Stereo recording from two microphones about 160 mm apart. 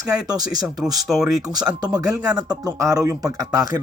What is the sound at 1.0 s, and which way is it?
Speech, centre (ahead or behind).